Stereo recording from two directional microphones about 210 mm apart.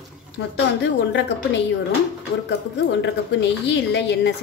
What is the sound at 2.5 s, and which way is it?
A woman's voice, 55° left (ahead or behind).